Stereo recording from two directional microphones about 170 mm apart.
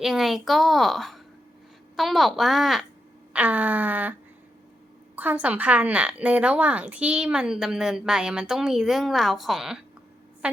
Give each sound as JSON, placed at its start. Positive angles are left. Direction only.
{"t": 0.0, "sound": "a woman's voice", "side_deg": 0}
{"t": 3.3, "sound": "a sound", "side_deg": -10}
{"t": 5.1, "sound": "a woman's voice", "side_deg": -10}